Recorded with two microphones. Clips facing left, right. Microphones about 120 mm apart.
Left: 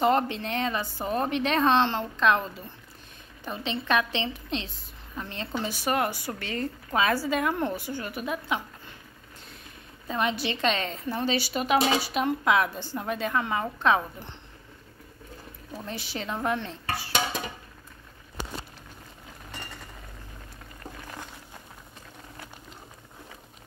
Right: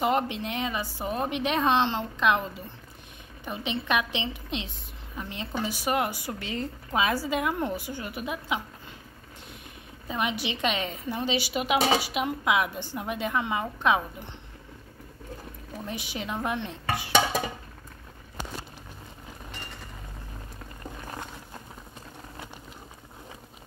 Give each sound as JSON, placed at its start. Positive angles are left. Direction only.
{"t": 0.0, "sound": "speech", "side_deg": -10}
{"t": 3.4, "sound": "speech", "side_deg": -15}
{"t": 10.0, "sound": "speech", "side_deg": -15}
{"t": 15.7, "sound": "speech", "side_deg": -15}
{"t": 16.4, "sound": "chopping", "side_deg": -15}